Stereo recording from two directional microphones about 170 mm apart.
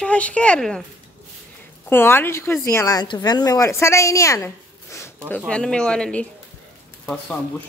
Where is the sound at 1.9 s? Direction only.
15° left (ahead or behind).